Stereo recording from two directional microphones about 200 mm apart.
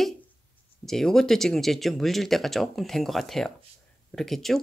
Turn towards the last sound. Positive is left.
turn(degrees=0)  # may be behind; listen again after turning